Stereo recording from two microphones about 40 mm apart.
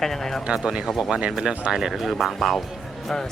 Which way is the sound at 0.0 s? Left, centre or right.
Centre.